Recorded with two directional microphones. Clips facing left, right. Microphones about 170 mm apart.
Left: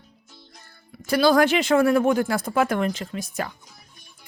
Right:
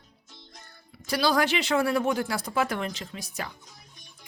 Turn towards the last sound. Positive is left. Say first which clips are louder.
# left 7 dB
turn(degrees=50)  # may be behind; listen again after turning